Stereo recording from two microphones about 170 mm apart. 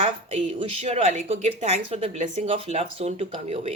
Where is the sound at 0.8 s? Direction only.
40° right (ahead or behind).